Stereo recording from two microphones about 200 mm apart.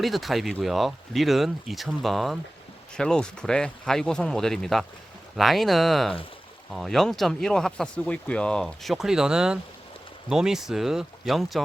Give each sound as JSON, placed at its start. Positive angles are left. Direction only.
{"t": 0.0, "sound": "speech", "side_deg": 0}